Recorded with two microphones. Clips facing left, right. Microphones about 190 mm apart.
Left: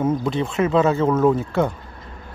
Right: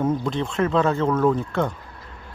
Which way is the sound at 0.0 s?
5° left (ahead or behind).